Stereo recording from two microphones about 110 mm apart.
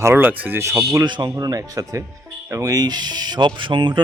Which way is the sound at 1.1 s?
40° right (ahead or behind).